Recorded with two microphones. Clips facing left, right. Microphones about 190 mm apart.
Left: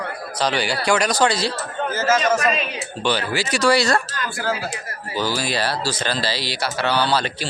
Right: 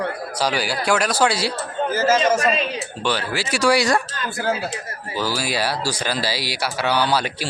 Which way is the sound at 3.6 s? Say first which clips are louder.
Even; 15° right (ahead or behind).